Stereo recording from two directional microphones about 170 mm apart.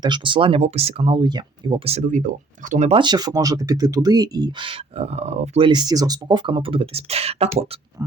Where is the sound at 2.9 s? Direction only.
25° right (ahead or behind).